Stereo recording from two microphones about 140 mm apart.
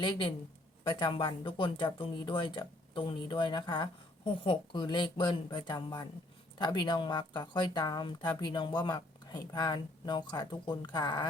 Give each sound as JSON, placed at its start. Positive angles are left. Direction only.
{"t": 0.9, "sound": "speech", "side_deg": 35}